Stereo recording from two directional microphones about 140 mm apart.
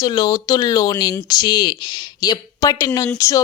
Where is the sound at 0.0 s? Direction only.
30° left (ahead or behind).